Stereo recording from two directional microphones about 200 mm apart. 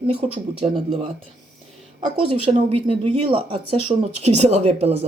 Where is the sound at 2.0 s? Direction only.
25° right (ahead or behind).